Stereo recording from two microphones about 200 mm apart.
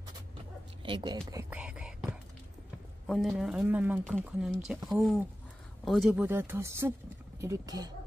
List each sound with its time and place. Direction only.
0.8 s speech: 25° right (ahead or behind)
1.5 s whispering: 5° right (ahead or behind)
3.1 s speech: centre (ahead or behind); by 7.9 s 20° right (ahead or behind)